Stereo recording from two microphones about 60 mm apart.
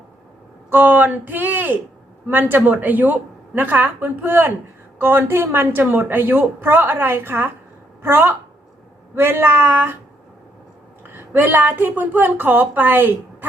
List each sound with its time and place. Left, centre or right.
0.7 s a woman's voice: right
11.1 s a woman's voice: right